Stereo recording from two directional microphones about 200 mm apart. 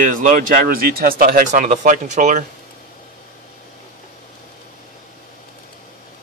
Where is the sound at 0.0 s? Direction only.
40° right (ahead or behind).